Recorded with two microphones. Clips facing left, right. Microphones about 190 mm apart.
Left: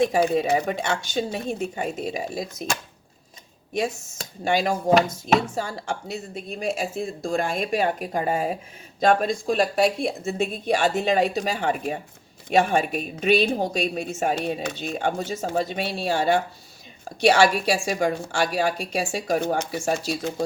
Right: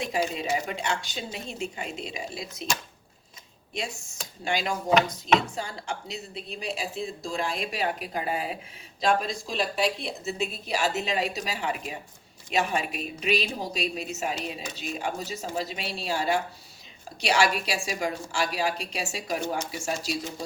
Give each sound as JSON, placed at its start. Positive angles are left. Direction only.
{"t": 0.0, "sound": "a woman's voice", "side_deg": 55}
{"t": 4.5, "sound": "a woman's voice", "side_deg": 50}
{"t": 17.2, "sound": "a woman's voice", "side_deg": 50}